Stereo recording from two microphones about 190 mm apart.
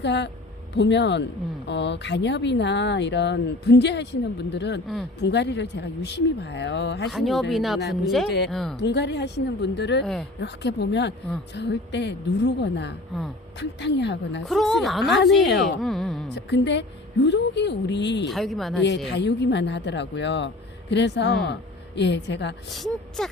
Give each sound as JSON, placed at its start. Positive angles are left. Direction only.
{"t": 0.0, "sound": "a woman's voice", "side_deg": 65}
{"t": 7.1, "sound": "a woman's voice", "side_deg": 0}
{"t": 8.8, "sound": "speech", "side_deg": 65}
{"t": 10.0, "sound": "a woman's voice", "side_deg": 0}
{"t": 10.4, "sound": "a woman's voice", "side_deg": 65}
{"t": 14.4, "sound": "a woman's voice", "side_deg": 0}
{"t": 15.0, "sound": "speech", "side_deg": 65}
{"t": 15.8, "sound": "a woman's voice", "side_deg": 0}
{"t": 16.3, "sound": "a woman's voice", "side_deg": 65}
{"t": 18.3, "sound": "a woman's voice", "side_deg": 0}
{"t": 18.8, "sound": "speech", "side_deg": 65}
{"t": 22.7, "sound": "a woman's voice", "side_deg": 0}